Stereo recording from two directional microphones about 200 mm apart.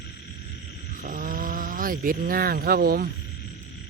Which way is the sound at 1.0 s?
45° right (ahead or behind).